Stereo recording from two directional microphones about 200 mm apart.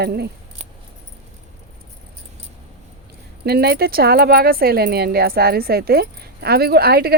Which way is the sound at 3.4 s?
50° right (ahead or behind).